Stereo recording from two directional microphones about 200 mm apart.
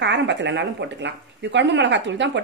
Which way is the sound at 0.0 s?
60° right (ahead or behind).